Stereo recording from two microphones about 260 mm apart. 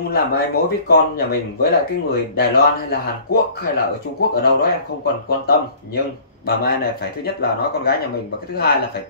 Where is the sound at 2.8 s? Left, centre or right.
Left.